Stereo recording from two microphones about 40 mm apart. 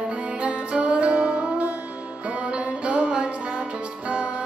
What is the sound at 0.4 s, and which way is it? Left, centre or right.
Music, right.